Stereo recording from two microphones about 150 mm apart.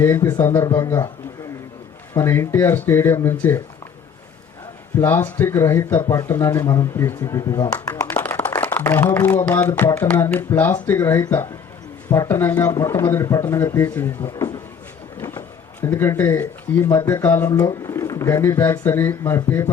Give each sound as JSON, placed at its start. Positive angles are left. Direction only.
{"t": 0.0, "sound": "speech", "side_deg": 15}
{"t": 2.1, "sound": "speech", "side_deg": 15}
{"t": 4.9, "sound": "speech", "side_deg": 15}
{"t": 17.5, "sound": "speech", "side_deg": 25}